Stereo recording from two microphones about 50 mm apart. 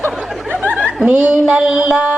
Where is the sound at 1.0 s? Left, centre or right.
Centre.